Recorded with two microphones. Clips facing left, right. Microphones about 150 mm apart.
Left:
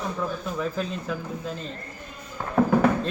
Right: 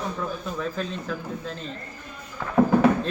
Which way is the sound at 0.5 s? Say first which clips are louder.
Left 1 dB; 5° left (ahead or behind).